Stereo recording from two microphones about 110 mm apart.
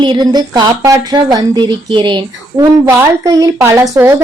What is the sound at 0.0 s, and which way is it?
A woman's voice, 45° right (ahead or behind).